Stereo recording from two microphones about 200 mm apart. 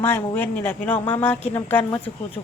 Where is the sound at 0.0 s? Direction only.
10° left (ahead or behind).